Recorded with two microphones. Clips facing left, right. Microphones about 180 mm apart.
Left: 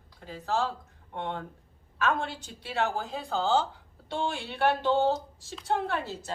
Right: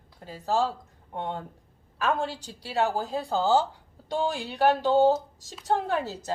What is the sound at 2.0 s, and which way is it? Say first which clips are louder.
Speech: right 2 dB; 35° right (ahead or behind).